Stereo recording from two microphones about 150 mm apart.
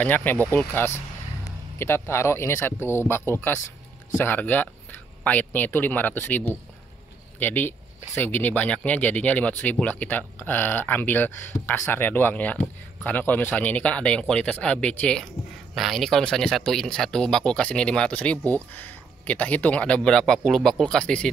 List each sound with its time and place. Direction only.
0.0 s speech: 10° left (ahead or behind)